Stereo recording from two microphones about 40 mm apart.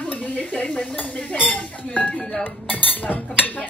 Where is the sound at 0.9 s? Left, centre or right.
Left.